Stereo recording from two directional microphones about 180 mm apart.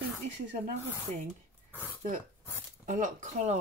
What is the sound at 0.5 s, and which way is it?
Speech, 40° right (ahead or behind).